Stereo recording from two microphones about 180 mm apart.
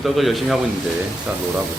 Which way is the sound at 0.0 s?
Centre (ahead or behind).